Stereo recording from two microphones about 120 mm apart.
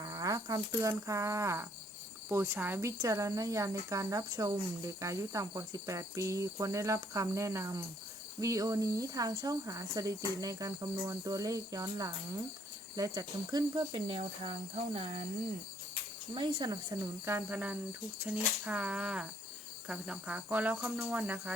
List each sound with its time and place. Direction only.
0.0 s speech: 30° right (ahead or behind); by 15.2 s 50° right (ahead or behind)
16.3 s speech: 45° right (ahead or behind)
16.9 s speech: 20° right (ahead or behind)